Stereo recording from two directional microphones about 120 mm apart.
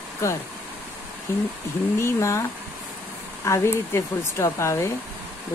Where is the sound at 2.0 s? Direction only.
25° left (ahead or behind).